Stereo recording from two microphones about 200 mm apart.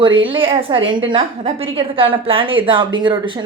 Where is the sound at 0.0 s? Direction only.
25° right (ahead or behind).